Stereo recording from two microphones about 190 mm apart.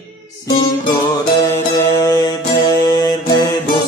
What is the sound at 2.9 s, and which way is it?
Mantra, 20° left (ahead or behind).